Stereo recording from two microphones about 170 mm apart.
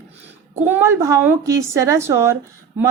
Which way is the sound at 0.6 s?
10° right (ahead or behind).